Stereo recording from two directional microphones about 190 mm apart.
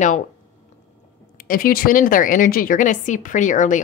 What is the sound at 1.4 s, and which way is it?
A woman's voice, 45° left (ahead or behind).